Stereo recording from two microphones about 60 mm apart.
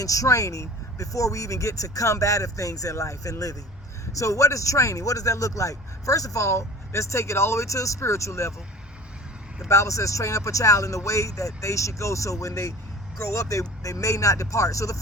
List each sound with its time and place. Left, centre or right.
0.0 s speech: left
4.2 s speech: left
9.6 s speech: left